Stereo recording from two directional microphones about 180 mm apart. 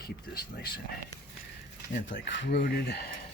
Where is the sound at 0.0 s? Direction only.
60° left (ahead or behind).